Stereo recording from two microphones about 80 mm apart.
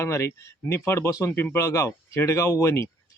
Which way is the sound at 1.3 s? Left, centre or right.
Left.